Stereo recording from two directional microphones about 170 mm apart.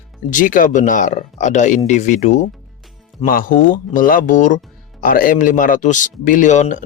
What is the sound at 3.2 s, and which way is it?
A man's voice, 55° left (ahead or behind).